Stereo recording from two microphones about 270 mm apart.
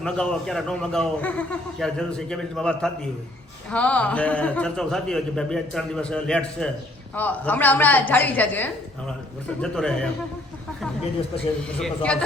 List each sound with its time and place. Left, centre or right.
0.0 s a man's voice: centre
11.8 s a man's voice: centre